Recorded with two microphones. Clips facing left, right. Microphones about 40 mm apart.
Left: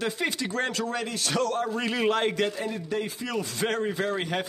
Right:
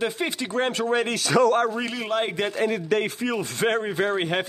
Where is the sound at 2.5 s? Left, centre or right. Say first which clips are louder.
Right 7 dB; right.